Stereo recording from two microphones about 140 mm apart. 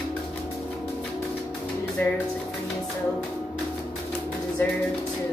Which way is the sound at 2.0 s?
15° left (ahead or behind).